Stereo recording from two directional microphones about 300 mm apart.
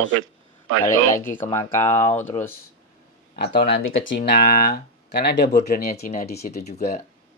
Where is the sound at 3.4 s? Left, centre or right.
Left.